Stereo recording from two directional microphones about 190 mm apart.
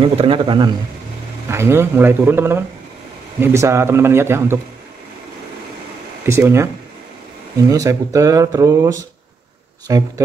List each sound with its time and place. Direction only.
0.0 s a man's voice: 25° right (ahead or behind)
1.5 s speech: 15° right (ahead or behind)
6.2 s speech: 15° right (ahead or behind)
7.7 s a man's voice: 20° right (ahead or behind)